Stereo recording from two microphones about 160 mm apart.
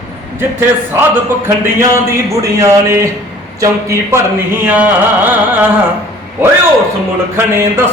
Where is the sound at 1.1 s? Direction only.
15° right (ahead or behind).